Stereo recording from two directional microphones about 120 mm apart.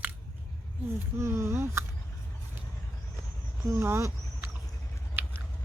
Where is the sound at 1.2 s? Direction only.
25° right (ahead or behind).